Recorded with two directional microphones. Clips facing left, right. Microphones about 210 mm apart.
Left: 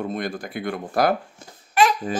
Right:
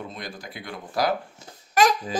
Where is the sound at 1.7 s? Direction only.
40° right (ahead or behind).